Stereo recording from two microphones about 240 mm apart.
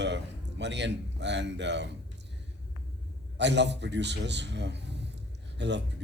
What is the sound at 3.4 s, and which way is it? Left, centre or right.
Speech, right.